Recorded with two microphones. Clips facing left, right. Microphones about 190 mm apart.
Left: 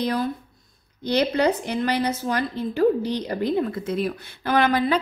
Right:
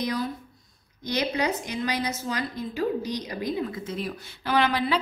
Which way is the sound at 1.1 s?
60° left (ahead or behind).